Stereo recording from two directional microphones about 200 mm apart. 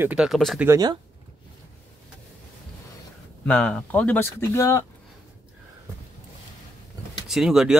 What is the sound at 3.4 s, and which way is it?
Speech, 5° left (ahead or behind).